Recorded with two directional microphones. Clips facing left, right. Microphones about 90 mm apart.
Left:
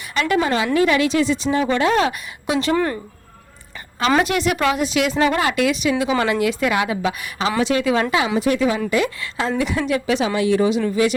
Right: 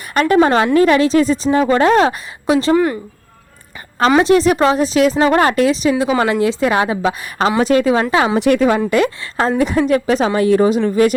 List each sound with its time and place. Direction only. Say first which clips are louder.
0.1 s a woman's voice: right 7 dB; 45° right (ahead or behind)
2.7 s speech: right 6 dB; 15° right (ahead or behind)
4.2 s a woman's voice: right 7 dB; 30° right (ahead or behind)
8.4 s speech: right 6 dB; 55° right (ahead or behind)
9.2 s a woman's voice: right 6 dB; 40° right (ahead or behind)